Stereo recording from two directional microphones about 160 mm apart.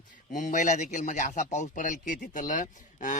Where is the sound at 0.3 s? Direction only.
50° left (ahead or behind).